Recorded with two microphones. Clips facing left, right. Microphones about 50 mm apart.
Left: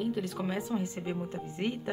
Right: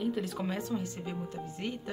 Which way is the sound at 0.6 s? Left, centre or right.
Centre.